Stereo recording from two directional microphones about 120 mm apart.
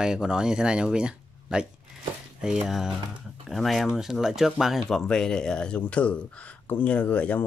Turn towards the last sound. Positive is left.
turn(degrees=15)  # may be behind; listen again after turning